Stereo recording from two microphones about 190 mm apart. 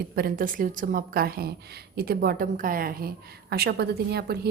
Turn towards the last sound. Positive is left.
turn(degrees=-55)  # may be behind; listen again after turning